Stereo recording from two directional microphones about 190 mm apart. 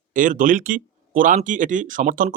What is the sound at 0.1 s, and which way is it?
A man's voice, 45° right (ahead or behind).